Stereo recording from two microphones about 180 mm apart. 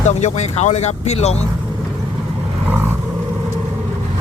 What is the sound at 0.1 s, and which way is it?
Speech, 40° left (ahead or behind).